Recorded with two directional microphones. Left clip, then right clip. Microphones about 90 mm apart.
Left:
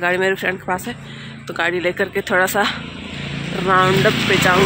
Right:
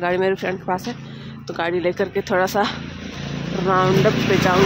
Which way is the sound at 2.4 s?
30° right (ahead or behind).